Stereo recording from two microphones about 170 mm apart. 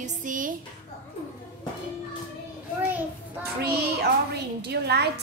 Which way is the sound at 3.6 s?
70° right (ahead or behind).